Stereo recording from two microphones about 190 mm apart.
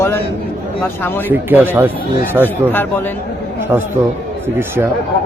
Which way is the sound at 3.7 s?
15° right (ahead or behind).